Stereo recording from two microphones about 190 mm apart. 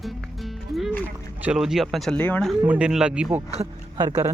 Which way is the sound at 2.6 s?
5° right (ahead or behind).